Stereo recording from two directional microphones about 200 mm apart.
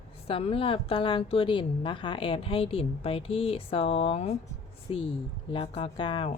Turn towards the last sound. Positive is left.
turn(degrees=25)  # may be behind; listen again after turning